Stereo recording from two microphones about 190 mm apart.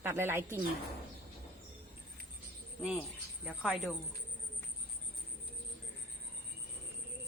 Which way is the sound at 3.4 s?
Centre (ahead or behind).